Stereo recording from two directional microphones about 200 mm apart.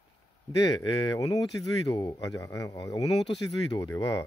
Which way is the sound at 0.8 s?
20° left (ahead or behind).